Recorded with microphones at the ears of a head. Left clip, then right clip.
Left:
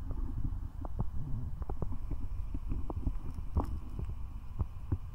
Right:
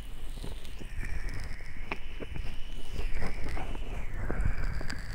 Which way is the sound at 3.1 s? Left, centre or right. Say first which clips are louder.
Right 4 dB; right.